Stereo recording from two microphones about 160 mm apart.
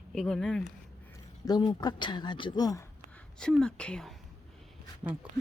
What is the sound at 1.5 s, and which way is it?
Speech, 25° left (ahead or behind).